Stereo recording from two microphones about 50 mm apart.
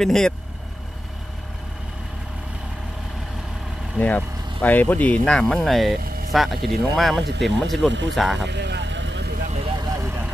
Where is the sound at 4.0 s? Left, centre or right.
Left.